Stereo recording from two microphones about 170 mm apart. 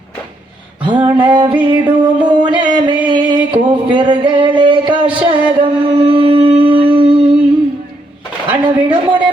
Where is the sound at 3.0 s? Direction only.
25° right (ahead or behind).